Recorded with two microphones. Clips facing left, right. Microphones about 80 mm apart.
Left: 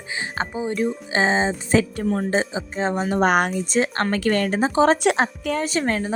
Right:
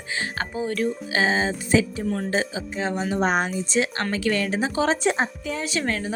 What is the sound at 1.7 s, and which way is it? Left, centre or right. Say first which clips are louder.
Speech: even; left.